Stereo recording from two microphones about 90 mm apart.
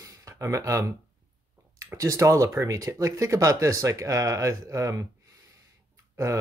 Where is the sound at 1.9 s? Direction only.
40° right (ahead or behind).